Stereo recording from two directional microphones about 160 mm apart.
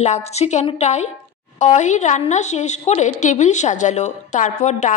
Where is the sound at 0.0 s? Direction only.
45° left (ahead or behind).